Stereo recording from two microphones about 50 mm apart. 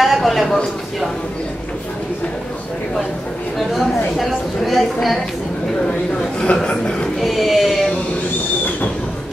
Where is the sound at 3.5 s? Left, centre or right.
Centre.